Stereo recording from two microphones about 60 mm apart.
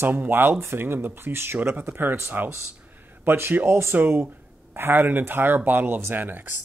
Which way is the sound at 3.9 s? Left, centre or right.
Right.